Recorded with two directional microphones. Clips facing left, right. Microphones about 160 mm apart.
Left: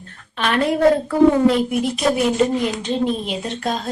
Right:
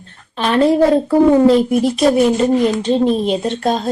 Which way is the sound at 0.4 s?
30° right (ahead or behind).